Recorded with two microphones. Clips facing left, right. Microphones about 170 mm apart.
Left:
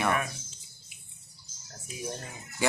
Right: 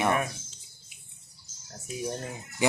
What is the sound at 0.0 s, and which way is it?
Speech, 20° right (ahead or behind).